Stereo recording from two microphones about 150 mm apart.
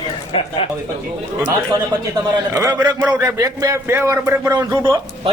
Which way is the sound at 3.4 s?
20° right (ahead or behind).